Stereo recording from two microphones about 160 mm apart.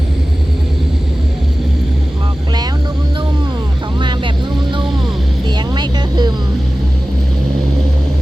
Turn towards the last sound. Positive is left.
turn(degrees=-25)  # may be behind; listen again after turning